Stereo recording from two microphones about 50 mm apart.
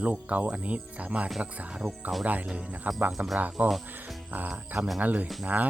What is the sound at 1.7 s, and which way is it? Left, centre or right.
Speech, centre.